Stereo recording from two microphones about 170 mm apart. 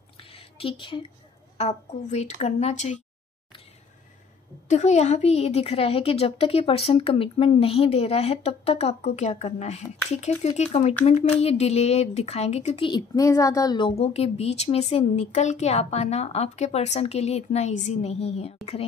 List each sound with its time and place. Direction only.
0.2 s a sound: 35° left (ahead or behind)
1.6 s speech: 40° left (ahead or behind)
4.6 s speech: 40° left (ahead or behind)